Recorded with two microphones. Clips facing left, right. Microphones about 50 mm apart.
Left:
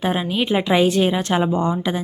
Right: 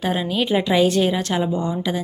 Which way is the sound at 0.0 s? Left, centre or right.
Centre.